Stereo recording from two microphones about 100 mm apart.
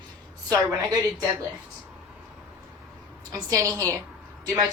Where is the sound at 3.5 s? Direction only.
35° right (ahead or behind).